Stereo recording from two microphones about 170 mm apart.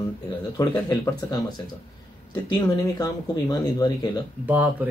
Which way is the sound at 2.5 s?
25° left (ahead or behind).